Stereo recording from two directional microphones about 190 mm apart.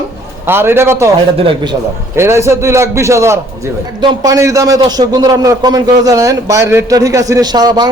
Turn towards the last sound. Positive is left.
turn(degrees=-20)  # may be behind; listen again after turning